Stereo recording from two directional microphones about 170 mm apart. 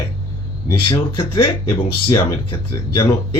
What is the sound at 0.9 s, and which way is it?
Speech, 25° left (ahead or behind).